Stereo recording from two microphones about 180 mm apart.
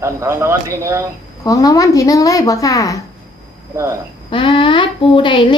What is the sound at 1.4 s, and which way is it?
A woman's voice, 20° left (ahead or behind).